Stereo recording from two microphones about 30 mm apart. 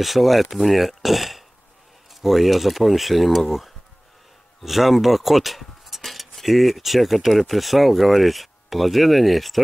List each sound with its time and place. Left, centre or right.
0.0 s speech: centre